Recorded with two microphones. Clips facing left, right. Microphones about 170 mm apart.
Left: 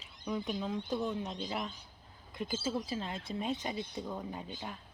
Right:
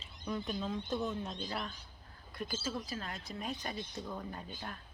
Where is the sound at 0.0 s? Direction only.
15° left (ahead or behind).